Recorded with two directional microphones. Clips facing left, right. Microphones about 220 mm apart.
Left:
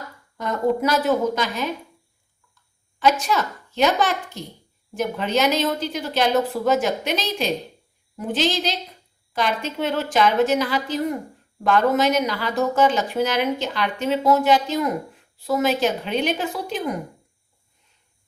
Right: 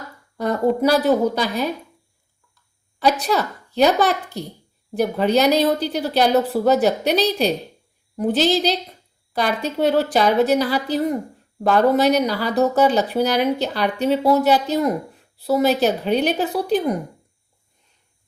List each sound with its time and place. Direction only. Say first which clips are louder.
0.3 s speech: right 3 dB; 35° right (ahead or behind)
3.0 s speech: right 1 dB; 35° right (ahead or behind)